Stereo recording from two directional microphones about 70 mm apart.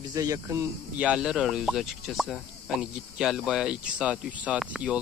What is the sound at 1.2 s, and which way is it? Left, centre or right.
Speech, centre.